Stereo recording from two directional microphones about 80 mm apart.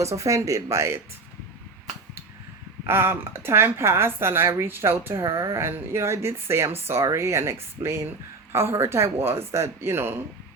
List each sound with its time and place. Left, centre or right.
0.0 s speech: right
2.8 s speech: right